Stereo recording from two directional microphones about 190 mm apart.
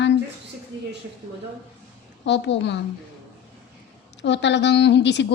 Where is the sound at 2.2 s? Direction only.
65° left (ahead or behind).